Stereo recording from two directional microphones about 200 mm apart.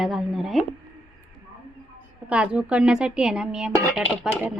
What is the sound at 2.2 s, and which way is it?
Speech, 5° right (ahead or behind).